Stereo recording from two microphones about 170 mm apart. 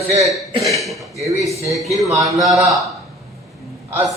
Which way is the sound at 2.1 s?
20° right (ahead or behind).